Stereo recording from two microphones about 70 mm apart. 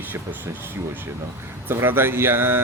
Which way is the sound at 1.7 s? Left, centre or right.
Right.